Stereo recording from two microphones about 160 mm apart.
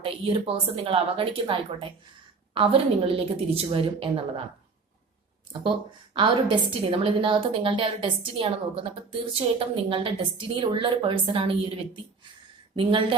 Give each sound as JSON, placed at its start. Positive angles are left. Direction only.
{"t": 0.0, "sound": "a woman's voice", "side_deg": -35}
{"t": 6.1, "sound": "a woman's voice", "side_deg": -30}
{"t": 12.7, "sound": "a woman's voice", "side_deg": -30}